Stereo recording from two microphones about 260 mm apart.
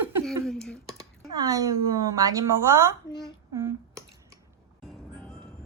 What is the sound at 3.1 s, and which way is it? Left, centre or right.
Speech, centre.